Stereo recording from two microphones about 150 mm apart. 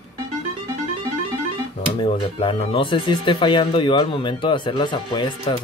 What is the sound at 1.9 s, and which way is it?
Speech, 35° left (ahead or behind).